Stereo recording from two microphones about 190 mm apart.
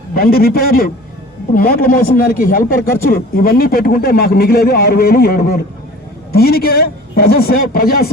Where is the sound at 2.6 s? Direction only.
15° left (ahead or behind).